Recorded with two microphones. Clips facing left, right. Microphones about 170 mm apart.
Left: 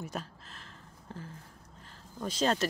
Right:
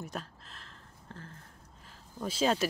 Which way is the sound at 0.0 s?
Centre (ahead or behind).